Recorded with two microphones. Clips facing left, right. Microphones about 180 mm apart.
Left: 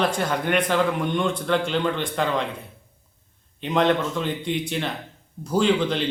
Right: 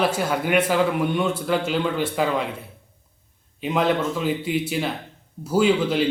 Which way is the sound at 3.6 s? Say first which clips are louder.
Even; 5° right (ahead or behind).